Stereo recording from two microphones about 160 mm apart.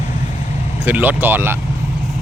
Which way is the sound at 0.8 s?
10° right (ahead or behind).